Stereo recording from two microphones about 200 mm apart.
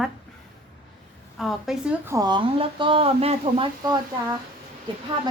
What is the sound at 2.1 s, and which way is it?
Speech, 20° right (ahead or behind).